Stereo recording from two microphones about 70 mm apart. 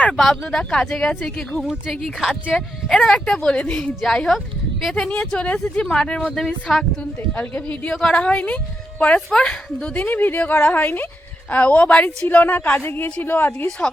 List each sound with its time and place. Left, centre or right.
0.1 s speech: centre
2.9 s speech: centre
7.3 s speech: left
10.0 s speech: left
13.7 s speech: centre